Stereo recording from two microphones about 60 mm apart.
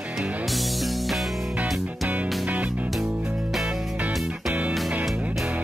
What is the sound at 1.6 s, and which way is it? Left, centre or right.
Music, right.